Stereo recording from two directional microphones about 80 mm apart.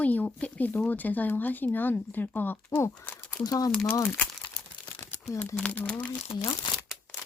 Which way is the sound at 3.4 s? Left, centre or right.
Left.